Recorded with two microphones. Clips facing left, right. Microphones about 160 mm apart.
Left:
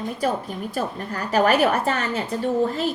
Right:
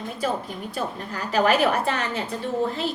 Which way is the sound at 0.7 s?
40° left (ahead or behind).